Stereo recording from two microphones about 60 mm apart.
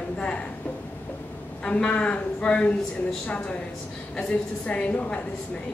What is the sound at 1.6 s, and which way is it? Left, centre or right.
A woman's voice, centre.